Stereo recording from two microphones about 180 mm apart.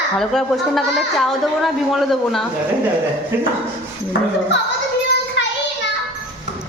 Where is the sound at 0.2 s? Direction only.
Centre (ahead or behind).